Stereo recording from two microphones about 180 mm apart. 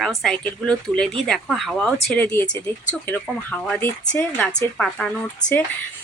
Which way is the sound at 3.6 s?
5° left (ahead or behind).